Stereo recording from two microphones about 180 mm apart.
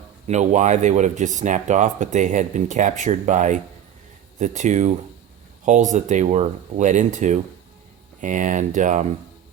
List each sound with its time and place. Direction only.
0.3 s speech: 40° right (ahead or behind)